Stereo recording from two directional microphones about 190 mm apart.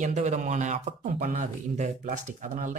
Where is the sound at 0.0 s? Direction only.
40° right (ahead or behind).